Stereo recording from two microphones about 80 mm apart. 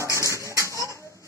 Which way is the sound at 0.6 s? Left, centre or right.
Left.